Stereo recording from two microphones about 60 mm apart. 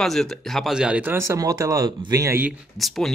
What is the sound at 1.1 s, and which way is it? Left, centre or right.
Speech, right.